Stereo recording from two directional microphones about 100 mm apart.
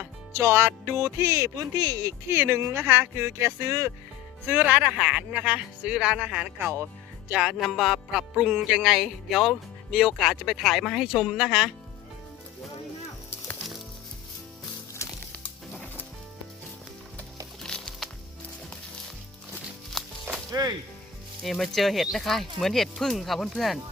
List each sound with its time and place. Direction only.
0.3 s speech: 25° right (ahead or behind)
4.4 s speech: 15° right (ahead or behind)
15.7 s sizzle: 15° left (ahead or behind)
17.6 s music: 5° left (ahead or behind)
20.0 s music: 5° left (ahead or behind)
20.5 s speech: 40° right (ahead or behind)
21.4 s speech: centre (ahead or behind)